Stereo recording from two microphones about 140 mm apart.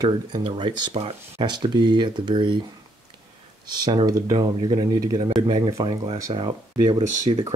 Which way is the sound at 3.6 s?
30° right (ahead or behind).